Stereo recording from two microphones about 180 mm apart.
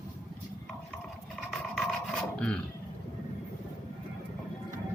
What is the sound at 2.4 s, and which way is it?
Speech, 5° left (ahead or behind).